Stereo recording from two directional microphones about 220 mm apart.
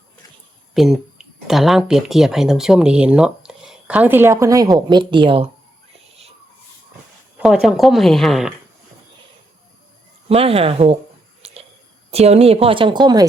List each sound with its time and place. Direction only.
0.7 s speech: centre (ahead or behind); by 5.5 s 25° right (ahead or behind)
7.3 s speech: 5° right (ahead or behind)
10.2 s speech: 25° right (ahead or behind)
12.1 s speech: 30° right (ahead or behind)